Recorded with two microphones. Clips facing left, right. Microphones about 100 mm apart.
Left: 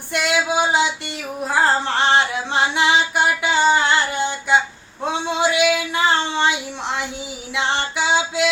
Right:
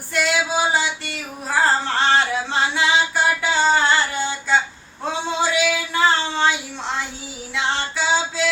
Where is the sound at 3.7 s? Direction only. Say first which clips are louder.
Left 1 dB; 20° left (ahead or behind).